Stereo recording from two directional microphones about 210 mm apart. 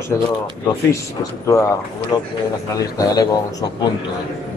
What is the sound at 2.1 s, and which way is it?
Speech, 20° left (ahead or behind).